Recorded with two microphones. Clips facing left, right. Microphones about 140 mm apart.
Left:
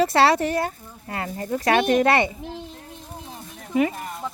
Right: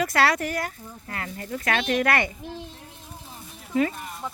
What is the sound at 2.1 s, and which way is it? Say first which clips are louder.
Speech: left 4 dB; 20° left (ahead or behind).